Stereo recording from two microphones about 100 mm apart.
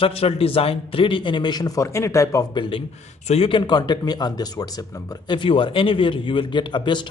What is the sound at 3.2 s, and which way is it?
Speech, 70° left (ahead or behind).